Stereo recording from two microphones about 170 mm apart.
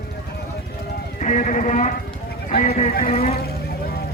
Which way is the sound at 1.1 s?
50° left (ahead or behind).